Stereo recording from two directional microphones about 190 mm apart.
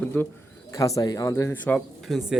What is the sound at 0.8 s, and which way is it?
Speech, 20° left (ahead or behind).